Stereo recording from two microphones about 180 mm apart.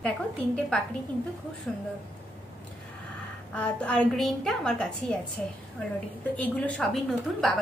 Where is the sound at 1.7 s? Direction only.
Centre (ahead or behind).